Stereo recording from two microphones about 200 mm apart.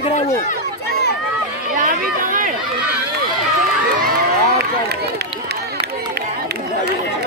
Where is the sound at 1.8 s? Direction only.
40° right (ahead or behind).